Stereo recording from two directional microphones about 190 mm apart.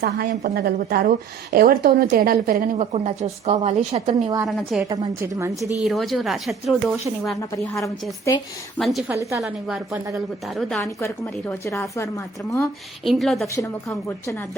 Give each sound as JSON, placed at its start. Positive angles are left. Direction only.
{"t": 0.0, "sound": "a woman's voice", "side_deg": -50}
{"t": 2.7, "sound": "a woman's voice", "side_deg": -35}
{"t": 4.4, "sound": "speech", "side_deg": 0}
{"t": 5.2, "sound": "a woman's voice", "side_deg": -15}
{"t": 5.8, "sound": "speech", "side_deg": 0}
{"t": 7.3, "sound": "a woman's voice", "side_deg": 10}
{"t": 9.0, "sound": "a woman's voice", "side_deg": -15}
{"t": 9.4, "sound": "speech", "side_deg": -5}
{"t": 11.0, "sound": "a woman's voice", "side_deg": 15}
{"t": 13.1, "sound": "speech", "side_deg": 0}
{"t": 13.6, "sound": "a woman's voice", "side_deg": 15}